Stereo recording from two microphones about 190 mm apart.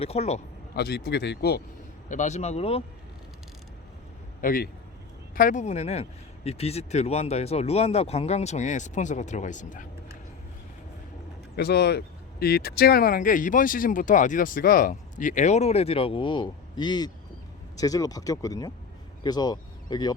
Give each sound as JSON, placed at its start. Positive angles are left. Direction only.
{"t": 0.0, "sound": "speech", "side_deg": 35}
{"t": 0.8, "sound": "speech", "side_deg": 55}
{"t": 2.0, "sound": "speech", "side_deg": 40}
{"t": 4.4, "sound": "speech", "side_deg": 50}
{"t": 11.5, "sound": "speech", "side_deg": 60}